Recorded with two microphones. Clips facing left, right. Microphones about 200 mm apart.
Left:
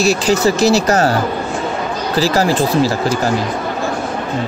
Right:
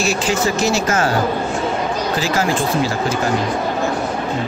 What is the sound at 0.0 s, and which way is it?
Speech, 40° left (ahead or behind).